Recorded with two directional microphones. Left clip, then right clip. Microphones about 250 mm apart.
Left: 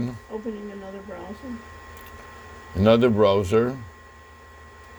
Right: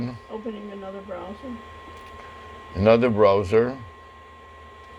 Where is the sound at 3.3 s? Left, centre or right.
Left.